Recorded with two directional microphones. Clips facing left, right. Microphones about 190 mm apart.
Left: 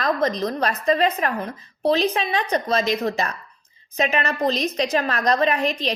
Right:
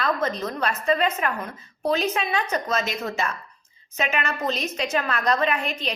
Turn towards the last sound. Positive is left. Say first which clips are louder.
# left 4 dB
turn(degrees=35)  # may be behind; listen again after turning